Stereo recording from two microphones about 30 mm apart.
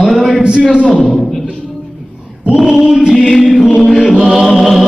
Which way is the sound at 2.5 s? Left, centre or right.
Right.